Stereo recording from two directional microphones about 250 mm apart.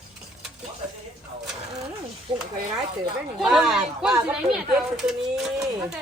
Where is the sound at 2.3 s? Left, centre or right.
Right.